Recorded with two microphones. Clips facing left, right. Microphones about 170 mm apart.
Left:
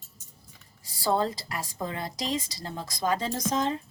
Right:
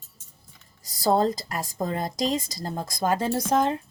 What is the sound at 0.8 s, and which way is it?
Speech, 40° right (ahead or behind).